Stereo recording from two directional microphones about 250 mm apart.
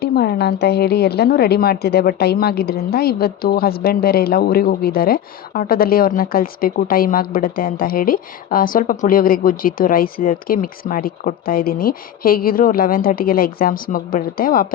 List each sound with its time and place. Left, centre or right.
0.0 s a woman's voice: left